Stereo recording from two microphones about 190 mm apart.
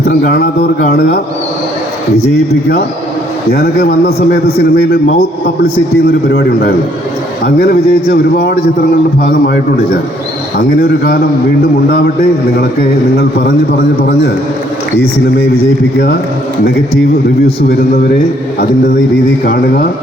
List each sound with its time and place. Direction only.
0.0 s a man's voice: 55° left (ahead or behind)
3.5 s a man's voice: 55° left (ahead or behind)
6.3 s a man's voice: 55° left (ahead or behind)
10.6 s a man's voice: 50° left (ahead or behind)
15.4 s a man's voice: 15° left (ahead or behind)
17.4 s a man's voice: 60° left (ahead or behind)
19.5 s a man's voice: 55° left (ahead or behind)